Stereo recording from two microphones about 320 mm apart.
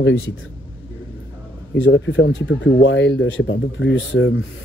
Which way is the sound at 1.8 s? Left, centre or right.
Left.